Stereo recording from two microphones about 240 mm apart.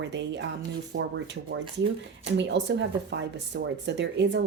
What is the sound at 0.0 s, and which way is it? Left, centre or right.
Speech, right.